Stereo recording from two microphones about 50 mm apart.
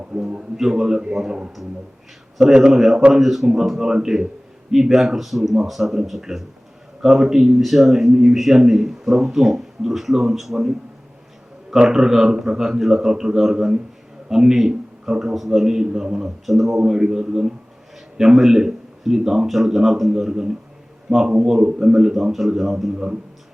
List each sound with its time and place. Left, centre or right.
0.5 s a man's voice: centre
2.5 s a man's voice: centre
2.7 s a man's voice: centre